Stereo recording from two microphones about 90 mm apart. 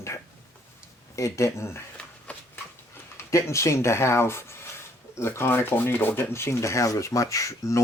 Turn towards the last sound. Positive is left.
turn(degrees=35)  # may be behind; listen again after turning